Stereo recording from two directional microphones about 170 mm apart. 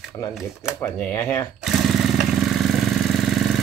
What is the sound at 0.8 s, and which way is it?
Speech, 15° left (ahead or behind).